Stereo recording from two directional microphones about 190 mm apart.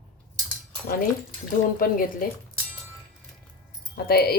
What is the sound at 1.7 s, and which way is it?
Speech, 50° left (ahead or behind).